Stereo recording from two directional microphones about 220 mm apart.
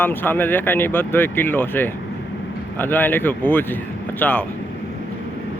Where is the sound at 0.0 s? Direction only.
10° left (ahead or behind).